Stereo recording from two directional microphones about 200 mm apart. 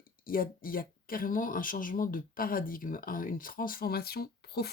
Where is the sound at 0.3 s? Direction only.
45° left (ahead or behind).